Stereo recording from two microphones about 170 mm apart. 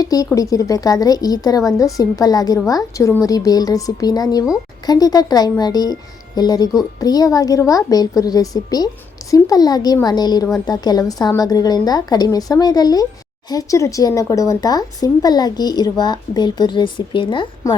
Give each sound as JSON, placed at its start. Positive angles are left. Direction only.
{"t": 0.0, "sound": "speech", "side_deg": 20}